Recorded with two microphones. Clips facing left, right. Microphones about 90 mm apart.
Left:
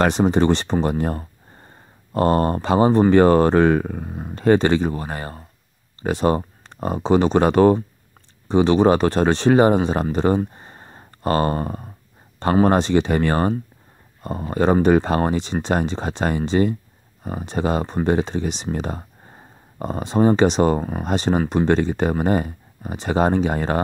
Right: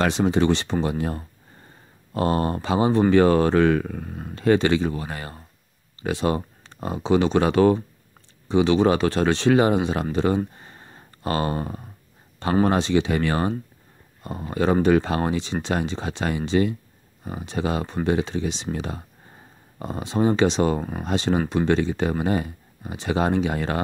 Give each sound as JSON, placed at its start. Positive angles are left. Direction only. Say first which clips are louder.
{"t": 0.0, "sound": "speech", "louder": "left 3 dB", "side_deg": 45}
{"t": 4.1, "sound": "speech", "louder": "left 3 dB", "side_deg": 15}
{"t": 4.4, "sound": "speech", "louder": "left 3 dB", "side_deg": 40}